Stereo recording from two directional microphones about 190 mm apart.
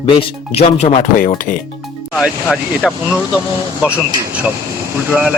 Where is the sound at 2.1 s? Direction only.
Centre (ahead or behind).